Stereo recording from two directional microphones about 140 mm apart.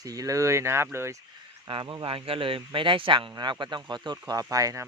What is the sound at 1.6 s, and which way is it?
A man's voice, 35° right (ahead or behind).